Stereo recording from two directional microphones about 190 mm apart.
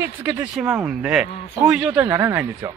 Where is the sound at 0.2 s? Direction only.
10° right (ahead or behind).